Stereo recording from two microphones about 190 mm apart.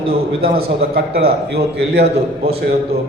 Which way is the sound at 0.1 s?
50° right (ahead or behind).